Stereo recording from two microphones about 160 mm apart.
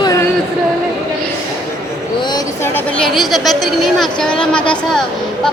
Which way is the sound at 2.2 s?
25° left (ahead or behind).